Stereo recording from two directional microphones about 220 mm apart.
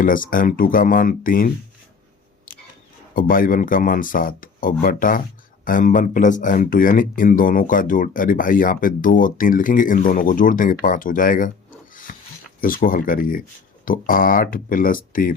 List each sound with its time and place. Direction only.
0.0 s speech: 40° left (ahead or behind)
3.2 s speech: 40° left (ahead or behind)
12.1 s rub: 40° left (ahead or behind)
12.5 s speech: 40° left (ahead or behind)